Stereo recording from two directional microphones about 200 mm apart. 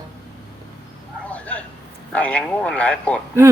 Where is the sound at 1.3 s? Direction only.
5° left (ahead or behind).